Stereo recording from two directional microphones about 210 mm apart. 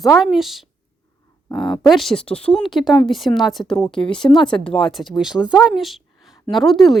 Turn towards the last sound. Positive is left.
turn(degrees=0)  # may be behind; listen again after turning